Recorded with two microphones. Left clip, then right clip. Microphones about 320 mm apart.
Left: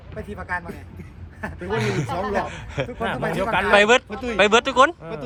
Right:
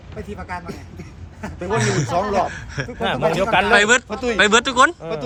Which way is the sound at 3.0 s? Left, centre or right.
Right.